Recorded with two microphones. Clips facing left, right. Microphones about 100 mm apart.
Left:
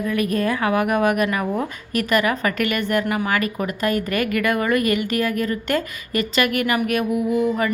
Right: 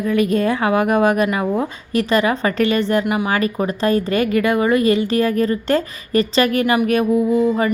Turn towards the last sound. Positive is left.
turn(degrees=-25)  # may be behind; listen again after turning